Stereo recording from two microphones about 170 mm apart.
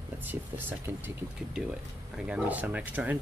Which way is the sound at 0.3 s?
10° right (ahead or behind).